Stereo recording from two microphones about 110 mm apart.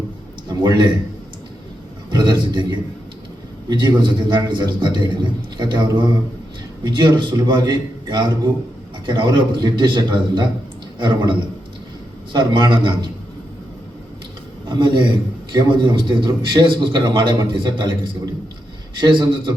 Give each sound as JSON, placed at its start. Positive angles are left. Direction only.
{"t": 0.4, "sound": "a man's voice", "side_deg": -40}
{"t": 2.0, "sound": "a man's voice", "side_deg": -45}
{"t": 14.7, "sound": "a man's voice", "side_deg": -45}
{"t": 18.9, "sound": "a man's voice", "side_deg": -45}